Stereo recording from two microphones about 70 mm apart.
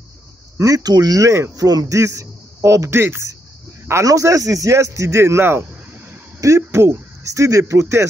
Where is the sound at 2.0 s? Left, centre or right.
Right.